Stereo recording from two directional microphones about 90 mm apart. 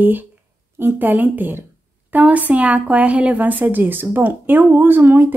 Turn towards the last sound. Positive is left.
turn(degrees=-25)  # may be behind; listen again after turning